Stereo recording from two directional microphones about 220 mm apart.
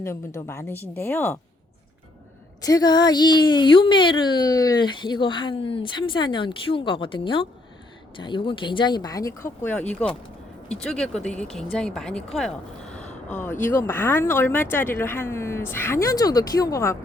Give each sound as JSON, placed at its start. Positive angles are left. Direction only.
{"t": 0.3, "sound": "speech", "side_deg": 10}
{"t": 2.6, "sound": "speech", "side_deg": 15}
{"t": 10.8, "sound": "speech", "side_deg": 5}